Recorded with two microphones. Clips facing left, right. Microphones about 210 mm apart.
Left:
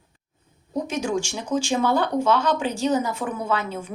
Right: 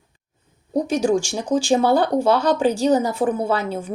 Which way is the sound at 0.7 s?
35° right (ahead or behind).